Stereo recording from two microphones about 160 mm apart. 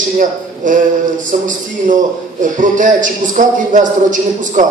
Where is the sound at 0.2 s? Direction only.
55° right (ahead or behind).